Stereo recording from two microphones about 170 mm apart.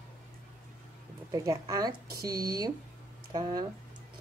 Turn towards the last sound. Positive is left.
turn(degrees=-25)  # may be behind; listen again after turning